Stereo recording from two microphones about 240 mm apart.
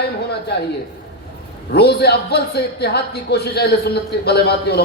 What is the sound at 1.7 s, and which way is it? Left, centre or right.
A man's voice, left.